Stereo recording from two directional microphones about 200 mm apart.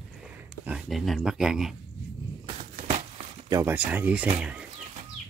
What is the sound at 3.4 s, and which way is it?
Speech, 15° right (ahead or behind).